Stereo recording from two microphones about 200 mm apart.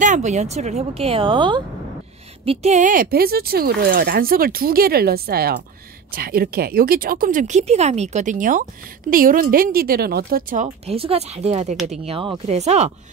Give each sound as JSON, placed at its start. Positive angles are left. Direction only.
{"t": 0.0, "sound": "speech", "side_deg": -35}